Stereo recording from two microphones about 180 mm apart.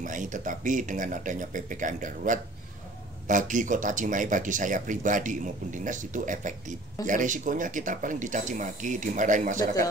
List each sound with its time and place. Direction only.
0.0 s speech: 45° right (ahead or behind)